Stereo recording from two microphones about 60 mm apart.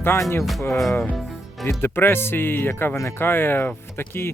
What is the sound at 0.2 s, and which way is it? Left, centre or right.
Speech, left.